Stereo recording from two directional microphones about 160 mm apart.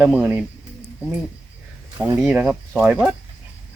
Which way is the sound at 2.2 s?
5° right (ahead or behind).